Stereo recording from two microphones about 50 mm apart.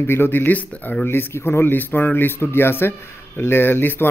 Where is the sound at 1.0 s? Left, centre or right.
Left.